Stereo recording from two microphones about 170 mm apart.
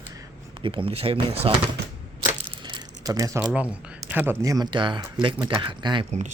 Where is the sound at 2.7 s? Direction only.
20° right (ahead or behind).